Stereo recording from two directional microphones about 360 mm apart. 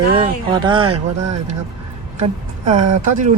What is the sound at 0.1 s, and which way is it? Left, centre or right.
Speech, centre.